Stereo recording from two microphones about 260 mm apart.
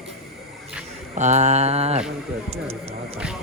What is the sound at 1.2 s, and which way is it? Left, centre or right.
Speech, right.